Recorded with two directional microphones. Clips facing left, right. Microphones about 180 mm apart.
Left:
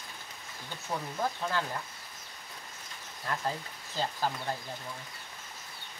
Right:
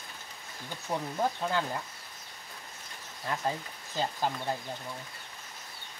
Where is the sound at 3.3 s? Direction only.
15° right (ahead or behind).